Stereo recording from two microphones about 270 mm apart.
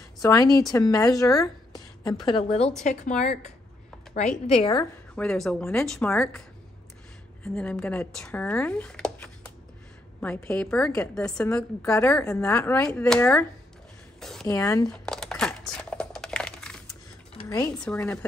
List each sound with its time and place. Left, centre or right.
0.2 s a woman's voice: centre
5.1 s a woman's voice: centre
7.4 s a woman's voice: centre
14.2 s a sound: centre
17.4 s a sound: centre
17.8 s a woman's voice: centre